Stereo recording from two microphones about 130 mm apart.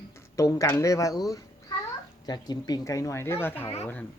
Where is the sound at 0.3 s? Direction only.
25° left (ahead or behind).